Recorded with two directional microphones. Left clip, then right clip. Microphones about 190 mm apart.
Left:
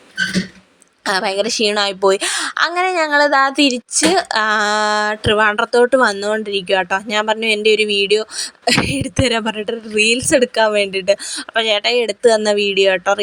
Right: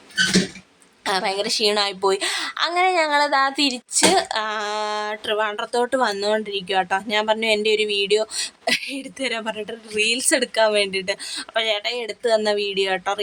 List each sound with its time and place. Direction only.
1.0 s a woman's voice: 25° left (ahead or behind)